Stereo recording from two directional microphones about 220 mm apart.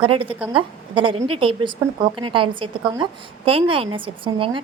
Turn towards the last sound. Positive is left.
turn(degrees=-20)  # may be behind; listen again after turning